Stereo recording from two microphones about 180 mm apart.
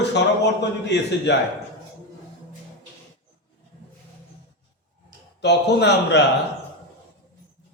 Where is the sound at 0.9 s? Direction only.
75° left (ahead or behind).